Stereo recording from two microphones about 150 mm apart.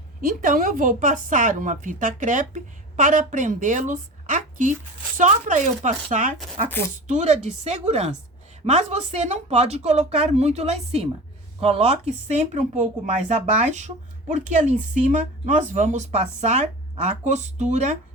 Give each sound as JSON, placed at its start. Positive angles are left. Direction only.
{"t": 0.3, "sound": "a woman's voice", "side_deg": -65}
{"t": 6.7, "sound": "speech", "side_deg": 15}
{"t": 7.1, "sound": "a woman's voice", "side_deg": -50}